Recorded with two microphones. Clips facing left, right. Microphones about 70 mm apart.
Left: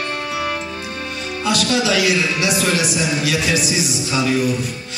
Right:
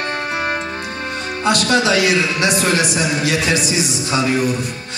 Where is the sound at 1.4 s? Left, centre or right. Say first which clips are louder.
Right 3 dB; right.